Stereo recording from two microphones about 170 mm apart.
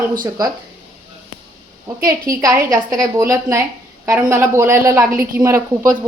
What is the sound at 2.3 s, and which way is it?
A woman's voice, 20° right (ahead or behind).